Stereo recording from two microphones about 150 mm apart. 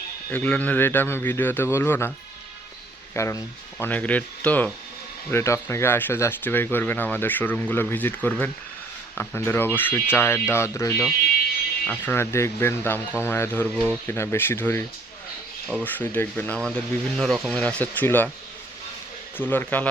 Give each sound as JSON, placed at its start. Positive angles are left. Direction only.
{"t": 0.3, "sound": "speech", "side_deg": 10}
{"t": 3.2, "sound": "speech", "side_deg": 20}
{"t": 19.4, "sound": "speech", "side_deg": 10}